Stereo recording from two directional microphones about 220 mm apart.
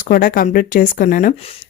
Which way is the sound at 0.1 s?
40° left (ahead or behind).